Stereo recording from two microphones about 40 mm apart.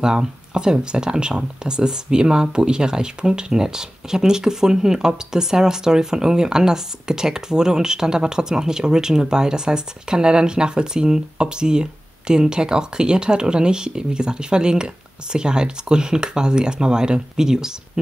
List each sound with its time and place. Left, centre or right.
0.0 s speech: centre